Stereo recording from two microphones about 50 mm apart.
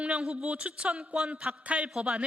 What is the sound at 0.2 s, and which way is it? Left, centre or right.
A woman's voice, centre.